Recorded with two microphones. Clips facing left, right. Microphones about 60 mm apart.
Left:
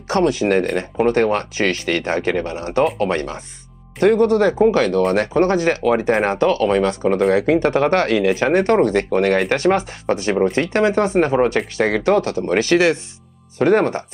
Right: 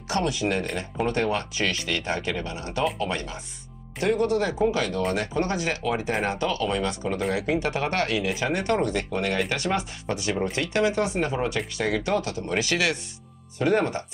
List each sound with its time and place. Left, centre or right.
0.1 s speech: left
5.1 s speech: left